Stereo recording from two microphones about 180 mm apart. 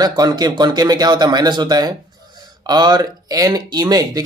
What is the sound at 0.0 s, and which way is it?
Speech, 20° right (ahead or behind).